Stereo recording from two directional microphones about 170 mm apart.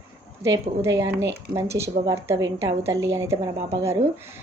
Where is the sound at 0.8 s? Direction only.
20° right (ahead or behind).